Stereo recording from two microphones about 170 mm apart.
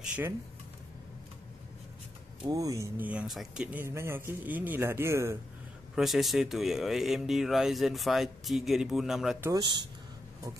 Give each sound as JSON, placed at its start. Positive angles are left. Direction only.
{"t": 2.5, "sound": "speech", "side_deg": -20}
{"t": 3.1, "sound": "a man's voice", "side_deg": -5}
{"t": 5.9, "sound": "speech", "side_deg": 0}
{"t": 9.4, "sound": "speech", "side_deg": -25}